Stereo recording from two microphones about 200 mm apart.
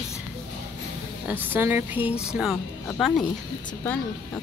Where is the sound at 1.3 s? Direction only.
10° right (ahead or behind).